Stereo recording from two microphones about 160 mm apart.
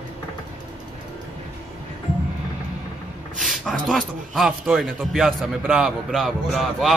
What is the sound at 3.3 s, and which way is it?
A man's voice, centre (ahead or behind).